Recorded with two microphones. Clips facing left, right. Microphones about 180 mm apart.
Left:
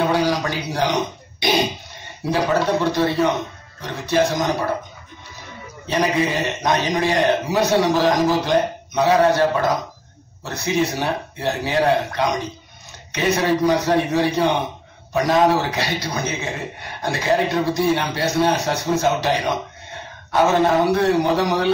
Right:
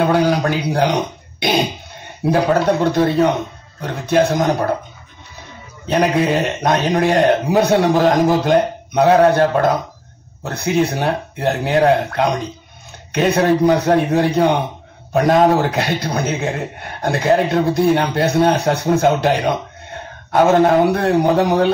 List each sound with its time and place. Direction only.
0.0 s a man's voice: 55° right (ahead or behind)
5.9 s a man's voice: 60° right (ahead or behind)